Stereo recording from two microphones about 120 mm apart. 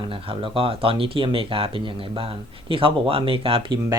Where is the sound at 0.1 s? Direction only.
50° right (ahead or behind).